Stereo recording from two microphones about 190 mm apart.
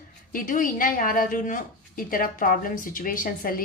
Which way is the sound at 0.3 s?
45° left (ahead or behind).